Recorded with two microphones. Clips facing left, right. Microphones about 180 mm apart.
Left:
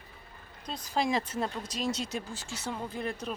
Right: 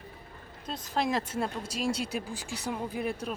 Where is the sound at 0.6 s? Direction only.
Centre (ahead or behind).